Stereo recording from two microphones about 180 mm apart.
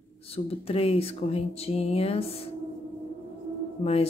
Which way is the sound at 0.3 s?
35° left (ahead or behind).